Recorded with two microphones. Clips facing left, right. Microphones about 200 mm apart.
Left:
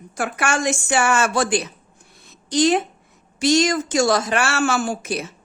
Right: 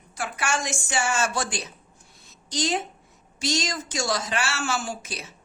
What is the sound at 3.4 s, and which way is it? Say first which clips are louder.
Speech: left 11 dB; 55° left (ahead or behind).